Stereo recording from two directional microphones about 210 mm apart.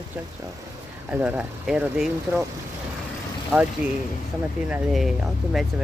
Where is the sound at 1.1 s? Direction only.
10° right (ahead or behind).